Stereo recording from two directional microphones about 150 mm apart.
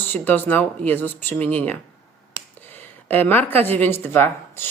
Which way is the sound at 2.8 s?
10° left (ahead or behind).